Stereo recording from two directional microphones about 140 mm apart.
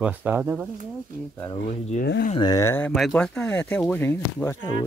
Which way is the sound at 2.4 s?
25° left (ahead or behind).